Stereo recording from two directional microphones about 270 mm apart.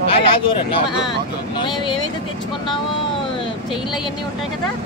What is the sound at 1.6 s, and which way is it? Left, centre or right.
Speech, centre.